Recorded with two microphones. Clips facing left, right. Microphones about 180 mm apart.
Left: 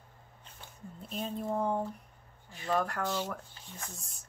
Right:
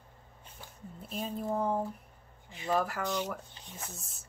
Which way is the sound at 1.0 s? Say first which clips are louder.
Even; 5° right (ahead or behind).